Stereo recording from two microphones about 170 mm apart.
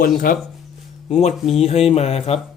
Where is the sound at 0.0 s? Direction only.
55° left (ahead or behind).